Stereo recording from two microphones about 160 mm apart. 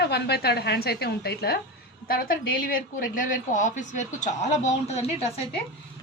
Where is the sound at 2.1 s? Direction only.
65° left (ahead or behind); by 5.4 s 40° left (ahead or behind).